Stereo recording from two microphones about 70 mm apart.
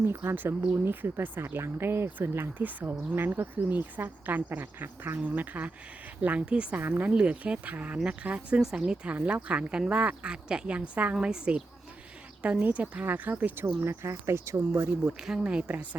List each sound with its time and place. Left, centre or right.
0.0 s speech: right; by 6.7 s centre
6.7 s speech: right
13.8 s speech: right
15.0 s speech: centre